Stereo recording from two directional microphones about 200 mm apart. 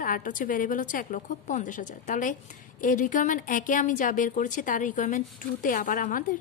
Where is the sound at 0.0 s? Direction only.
40° left (ahead or behind).